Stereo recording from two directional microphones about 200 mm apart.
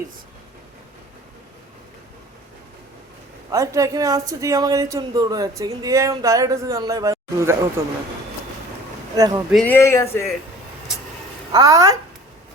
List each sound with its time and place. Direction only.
3.5 s speech: 15° right (ahead or behind)
9.1 s speech: 20° right (ahead or behind)
9.5 s speech: 5° left (ahead or behind)
11.5 s speech: 15° right (ahead or behind)